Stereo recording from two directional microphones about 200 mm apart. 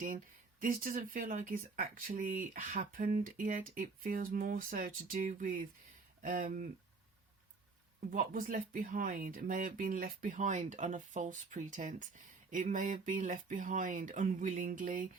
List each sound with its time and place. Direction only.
0.6 s speech: 45° right (ahead or behind)
8.1 s speech: 45° right (ahead or behind)